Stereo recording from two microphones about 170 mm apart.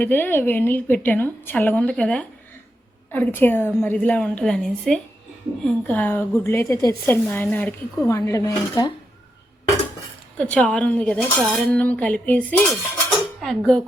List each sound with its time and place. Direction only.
0.0 s a woman's voice: 10° left (ahead or behind)
10.3 s a woman's voice: 5° left (ahead or behind)